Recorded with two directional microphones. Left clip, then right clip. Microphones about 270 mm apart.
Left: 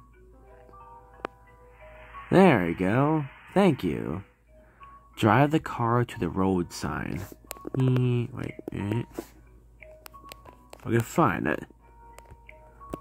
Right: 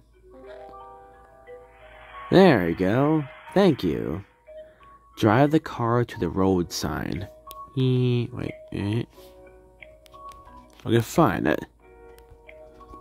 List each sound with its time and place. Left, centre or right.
2.2 s speech: centre
10.8 s speech: centre